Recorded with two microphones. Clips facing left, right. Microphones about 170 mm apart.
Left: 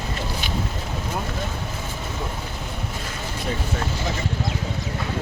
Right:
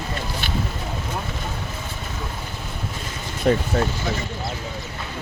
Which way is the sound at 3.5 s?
70° right (ahead or behind).